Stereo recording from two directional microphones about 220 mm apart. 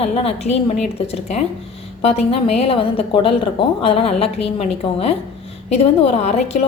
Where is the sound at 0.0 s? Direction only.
30° left (ahead or behind).